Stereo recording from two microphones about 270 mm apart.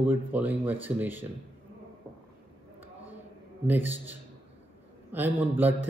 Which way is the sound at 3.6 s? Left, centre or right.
Centre.